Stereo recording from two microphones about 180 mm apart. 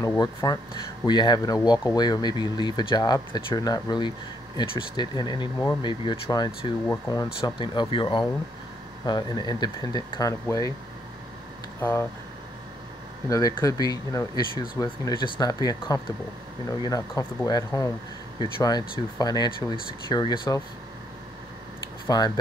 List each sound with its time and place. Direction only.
0.0 s speech: 15° left (ahead or behind)
11.8 s speech: 15° left (ahead or behind)
13.3 s speech: 20° left (ahead or behind)
22.0 s speech: 20° left (ahead or behind)